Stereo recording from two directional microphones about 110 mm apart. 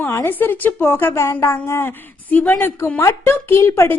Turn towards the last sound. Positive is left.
turn(degrees=25)  # may be behind; listen again after turning